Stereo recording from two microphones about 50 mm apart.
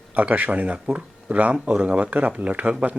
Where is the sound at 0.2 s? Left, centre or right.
Right.